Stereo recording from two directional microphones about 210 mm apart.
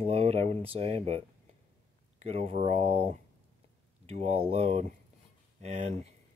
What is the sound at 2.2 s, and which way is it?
Speech, 30° right (ahead or behind).